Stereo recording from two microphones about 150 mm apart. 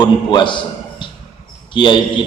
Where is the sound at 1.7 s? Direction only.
30° left (ahead or behind).